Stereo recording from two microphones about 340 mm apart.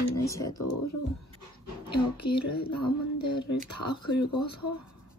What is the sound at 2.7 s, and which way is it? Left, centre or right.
Speech, left.